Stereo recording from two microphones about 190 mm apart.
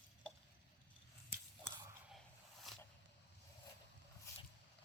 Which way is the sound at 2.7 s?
Centre (ahead or behind).